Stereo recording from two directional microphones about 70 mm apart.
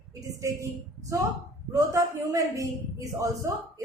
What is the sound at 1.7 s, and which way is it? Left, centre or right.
A woman's voice, right.